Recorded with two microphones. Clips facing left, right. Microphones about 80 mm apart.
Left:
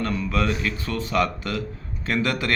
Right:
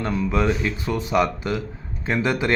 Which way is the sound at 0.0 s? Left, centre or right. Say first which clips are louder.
Right 2 dB; centre.